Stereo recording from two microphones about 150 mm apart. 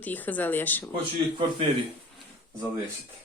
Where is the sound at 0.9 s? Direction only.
40° right (ahead or behind).